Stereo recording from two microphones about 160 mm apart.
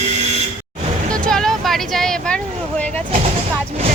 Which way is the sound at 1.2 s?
5° left (ahead or behind).